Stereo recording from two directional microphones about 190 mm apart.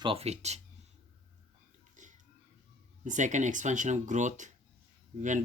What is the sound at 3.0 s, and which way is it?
Speech, 40° right (ahead or behind).